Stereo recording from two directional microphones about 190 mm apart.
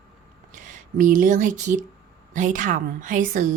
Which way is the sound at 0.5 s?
40° right (ahead or behind).